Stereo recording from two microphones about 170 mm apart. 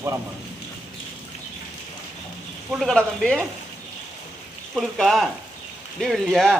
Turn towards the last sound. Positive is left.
turn(degrees=0)  # may be behind; listen again after turning